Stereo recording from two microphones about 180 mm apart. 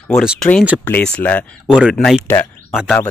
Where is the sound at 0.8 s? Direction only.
10° left (ahead or behind).